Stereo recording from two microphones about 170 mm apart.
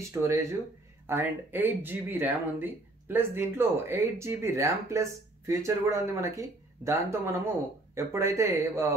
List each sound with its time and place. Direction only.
0.1 s speech: 15° right (ahead or behind)